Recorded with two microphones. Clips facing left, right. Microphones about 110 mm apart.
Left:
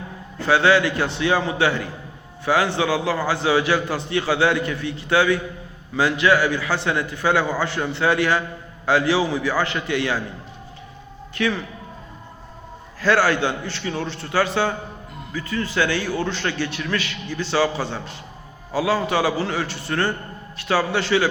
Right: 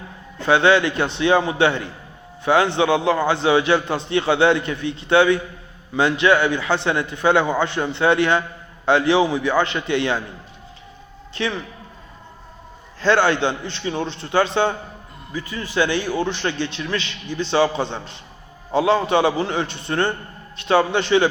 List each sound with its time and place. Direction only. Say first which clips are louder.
0.3 s a man's voice: right 1 dB; 20° right (ahead or behind)
11.3 s a man's voice: left 2 dB; 20° right (ahead or behind)
13.0 s a man's voice: right 1 dB; 25° right (ahead or behind)